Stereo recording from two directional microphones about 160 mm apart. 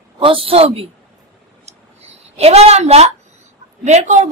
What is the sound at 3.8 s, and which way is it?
Speech, 45° right (ahead or behind).